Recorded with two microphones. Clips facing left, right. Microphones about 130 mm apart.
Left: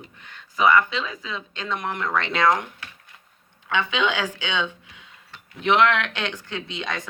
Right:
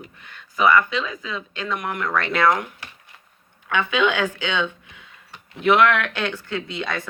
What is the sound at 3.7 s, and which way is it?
Speech, 20° left (ahead or behind).